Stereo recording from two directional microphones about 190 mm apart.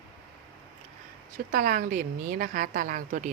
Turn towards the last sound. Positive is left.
turn(degrees=-45)  # may be behind; listen again after turning